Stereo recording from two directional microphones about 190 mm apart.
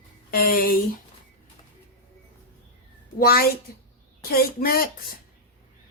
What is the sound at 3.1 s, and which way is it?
Speech, 50° left (ahead or behind).